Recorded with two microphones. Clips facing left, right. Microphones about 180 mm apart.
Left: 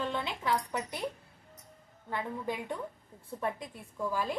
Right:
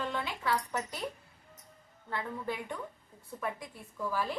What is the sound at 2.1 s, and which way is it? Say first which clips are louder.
A woman's voice: left 1 dB; 15° left (ahead or behind).